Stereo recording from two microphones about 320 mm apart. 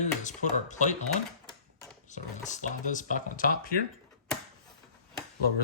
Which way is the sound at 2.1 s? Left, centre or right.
Left.